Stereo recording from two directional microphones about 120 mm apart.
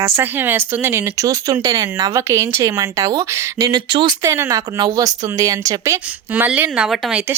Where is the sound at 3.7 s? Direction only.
40° right (ahead or behind).